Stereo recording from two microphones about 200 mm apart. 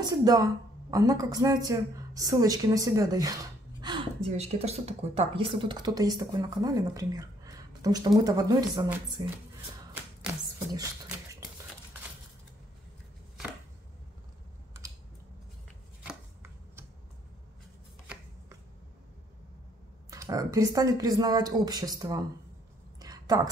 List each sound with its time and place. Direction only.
0.0 s speech: 20° right (ahead or behind)
10.7 s beatboxing: 15° right (ahead or behind)
16.0 s chopping: 10° right (ahead or behind)
20.1 s speech: 15° right (ahead or behind)
22.9 s a sound: 20° right (ahead or behind)